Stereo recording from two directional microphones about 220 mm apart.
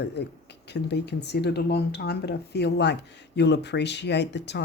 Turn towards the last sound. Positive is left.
turn(degrees=50)  # may be behind; listen again after turning